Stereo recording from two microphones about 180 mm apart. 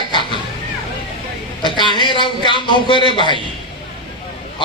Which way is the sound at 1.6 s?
25° left (ahead or behind).